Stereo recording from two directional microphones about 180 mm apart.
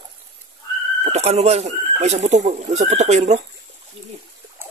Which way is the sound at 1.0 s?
35° right (ahead or behind).